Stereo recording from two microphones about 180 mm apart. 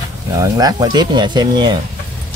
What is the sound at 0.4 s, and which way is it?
Speech, 20° right (ahead or behind).